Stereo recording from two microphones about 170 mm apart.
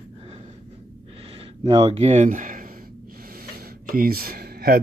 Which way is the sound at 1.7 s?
35° right (ahead or behind).